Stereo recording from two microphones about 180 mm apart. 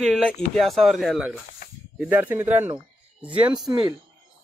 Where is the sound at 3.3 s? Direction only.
30° right (ahead or behind).